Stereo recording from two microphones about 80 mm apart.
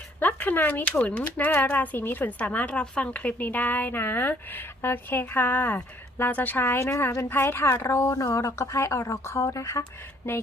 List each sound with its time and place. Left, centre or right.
0.2 s speech: left